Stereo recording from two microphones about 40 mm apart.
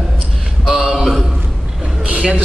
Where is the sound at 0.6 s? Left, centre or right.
Centre.